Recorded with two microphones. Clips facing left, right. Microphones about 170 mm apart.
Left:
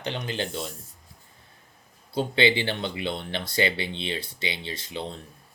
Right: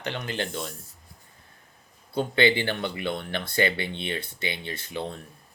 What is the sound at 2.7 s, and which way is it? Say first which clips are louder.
Speech: right 1 dB; 20° left (ahead or behind).